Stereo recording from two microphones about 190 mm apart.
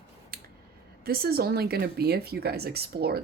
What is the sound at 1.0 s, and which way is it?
Speech, 55° right (ahead or behind).